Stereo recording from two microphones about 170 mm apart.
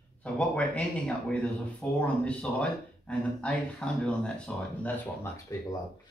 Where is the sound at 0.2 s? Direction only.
5° left (ahead or behind).